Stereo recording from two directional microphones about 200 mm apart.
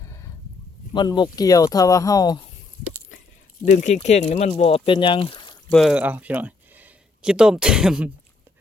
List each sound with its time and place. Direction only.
0.0 s a sound: 15° left (ahead or behind)
0.9 s speech: 20° left (ahead or behind)
3.7 s speech: 40° left (ahead or behind); by 5.5 s 25° left (ahead or behind)
5.7 s speech: 5° right (ahead or behind)